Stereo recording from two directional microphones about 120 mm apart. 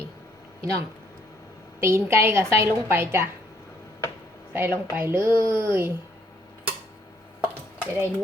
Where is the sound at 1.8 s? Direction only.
20° right (ahead or behind).